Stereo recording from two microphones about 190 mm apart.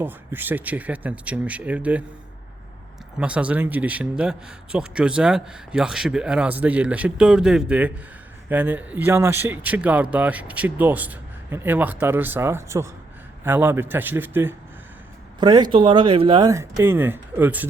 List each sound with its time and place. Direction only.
0.0 s speech: 10° right (ahead or behind)
3.2 s speech: 5° right (ahead or behind)
15.4 s speech: 25° right (ahead or behind)